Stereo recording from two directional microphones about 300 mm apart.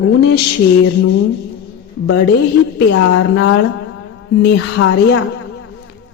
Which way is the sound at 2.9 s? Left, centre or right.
Left.